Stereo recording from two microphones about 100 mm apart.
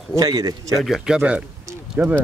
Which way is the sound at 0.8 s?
5° right (ahead or behind).